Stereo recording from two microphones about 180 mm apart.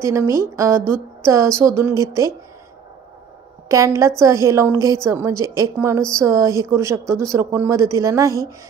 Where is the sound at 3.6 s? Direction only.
15° right (ahead or behind).